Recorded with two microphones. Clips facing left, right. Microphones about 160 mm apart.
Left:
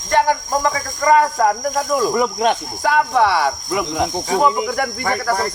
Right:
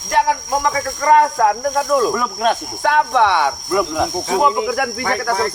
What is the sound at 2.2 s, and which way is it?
Speech, 20° left (ahead or behind).